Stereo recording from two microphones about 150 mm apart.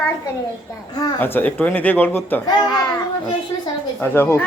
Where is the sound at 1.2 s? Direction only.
10° left (ahead or behind).